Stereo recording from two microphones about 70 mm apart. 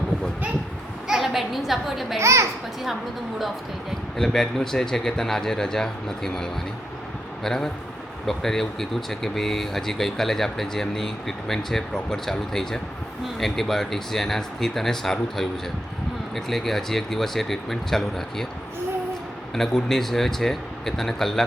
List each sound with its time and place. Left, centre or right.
1.0 s a woman's voice: centre
2.2 s a child's voice: right
2.8 s speech: centre
19.5 s speech: centre